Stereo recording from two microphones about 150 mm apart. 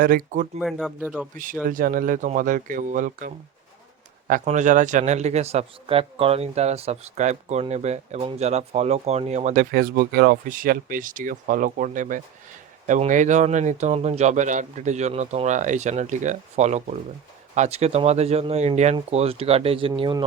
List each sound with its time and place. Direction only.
0.0 s speech: 70° right (ahead or behind)
0.6 s speech: centre (ahead or behind)
1.6 s speech: 65° right (ahead or behind); by 9.6 s 50° right (ahead or behind)
9.7 s speech: 80° right; by 20.2 s 30° right (ahead or behind)